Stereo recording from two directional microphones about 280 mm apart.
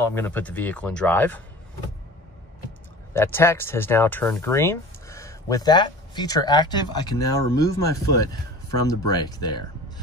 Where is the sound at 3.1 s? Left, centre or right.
Centre.